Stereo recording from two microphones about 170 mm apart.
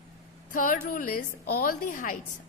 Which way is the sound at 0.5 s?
55° left (ahead or behind).